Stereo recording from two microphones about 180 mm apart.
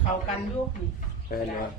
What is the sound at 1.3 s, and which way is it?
Speech, 50° left (ahead or behind).